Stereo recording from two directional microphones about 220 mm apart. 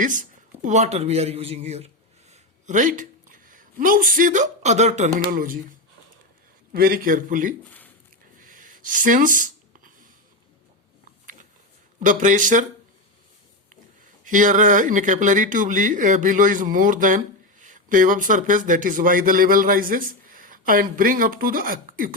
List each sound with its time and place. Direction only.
0.0 s speech: 35° right (ahead or behind)
6.7 s speech: 40° right (ahead or behind)
8.4 s a sound: 35° right (ahead or behind)
11.9 s speech: 35° right (ahead or behind)
14.3 s a man's voice: 35° right (ahead or behind)